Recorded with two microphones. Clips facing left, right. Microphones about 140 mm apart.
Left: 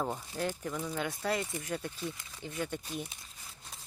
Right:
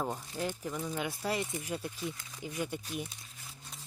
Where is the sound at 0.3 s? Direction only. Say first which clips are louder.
Left 2 dB; 10° right (ahead or behind).